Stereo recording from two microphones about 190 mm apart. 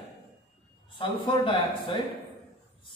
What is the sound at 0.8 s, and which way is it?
A man's voice, 25° left (ahead or behind).